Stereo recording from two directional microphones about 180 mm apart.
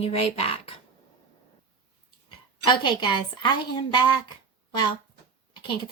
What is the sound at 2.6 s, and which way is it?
A woman's voice, 25° left (ahead or behind).